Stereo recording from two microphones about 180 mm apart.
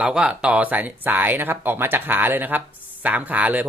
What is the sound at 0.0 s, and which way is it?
A man's voice, 5° right (ahead or behind).